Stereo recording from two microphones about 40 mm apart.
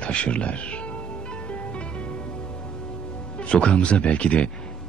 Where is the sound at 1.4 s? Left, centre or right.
Left.